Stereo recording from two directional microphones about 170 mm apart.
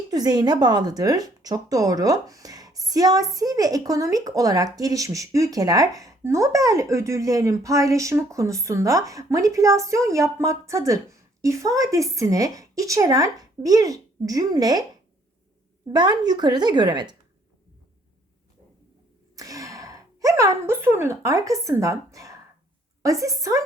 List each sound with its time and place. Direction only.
0.1 s speech: 25° right (ahead or behind)
16.0 s speech: 25° right (ahead or behind)
19.4 s speech: 20° right (ahead or behind)